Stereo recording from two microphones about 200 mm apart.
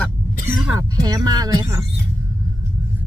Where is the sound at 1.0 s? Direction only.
20° right (ahead or behind).